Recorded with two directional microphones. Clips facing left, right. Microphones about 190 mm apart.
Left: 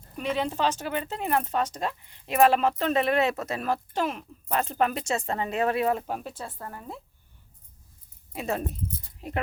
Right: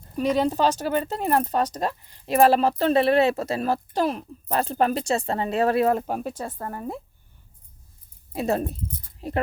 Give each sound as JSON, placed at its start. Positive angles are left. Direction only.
{"t": 0.2, "sound": "speech", "side_deg": -40}
{"t": 8.3, "sound": "speech", "side_deg": -35}